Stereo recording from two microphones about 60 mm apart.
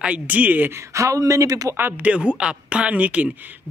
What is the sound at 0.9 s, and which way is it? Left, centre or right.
Speech, right.